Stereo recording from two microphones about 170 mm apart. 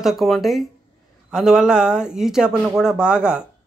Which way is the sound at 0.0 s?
Centre (ahead or behind).